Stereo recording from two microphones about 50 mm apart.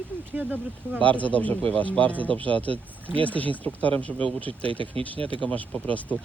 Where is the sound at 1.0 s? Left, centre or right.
Left.